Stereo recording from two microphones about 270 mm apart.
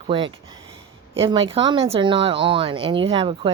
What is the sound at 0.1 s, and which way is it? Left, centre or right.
Speech, centre.